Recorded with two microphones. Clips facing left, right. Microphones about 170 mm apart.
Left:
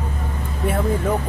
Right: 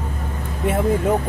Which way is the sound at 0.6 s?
20° right (ahead or behind).